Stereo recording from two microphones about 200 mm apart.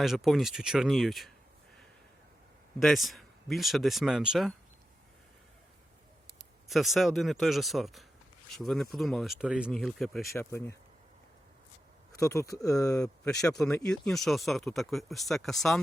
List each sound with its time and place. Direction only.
0.0 s speech: centre (ahead or behind)
2.7 s speech: centre (ahead or behind)
6.4 s speech: centre (ahead or behind)
10.3 s speech: 10° left (ahead or behind)
12.1 s speech: 15° left (ahead or behind)
13.0 s speech: 5° left (ahead or behind)